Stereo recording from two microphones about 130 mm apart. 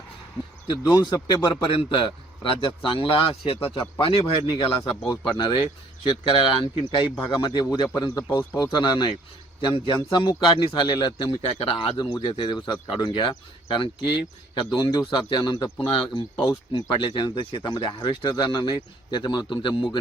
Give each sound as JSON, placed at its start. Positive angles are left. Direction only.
{"t": 0.9, "sound": "a man's voice", "side_deg": 35}